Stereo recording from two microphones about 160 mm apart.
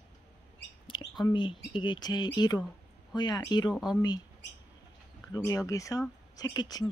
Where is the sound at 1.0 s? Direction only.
25° left (ahead or behind).